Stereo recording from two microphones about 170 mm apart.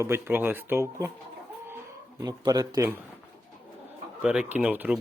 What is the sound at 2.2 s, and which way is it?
Speech, 25° right (ahead or behind).